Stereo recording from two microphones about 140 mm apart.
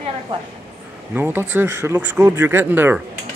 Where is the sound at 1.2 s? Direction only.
15° right (ahead or behind).